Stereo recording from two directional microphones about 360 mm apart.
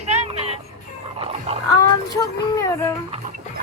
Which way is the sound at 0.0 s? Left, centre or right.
Centre.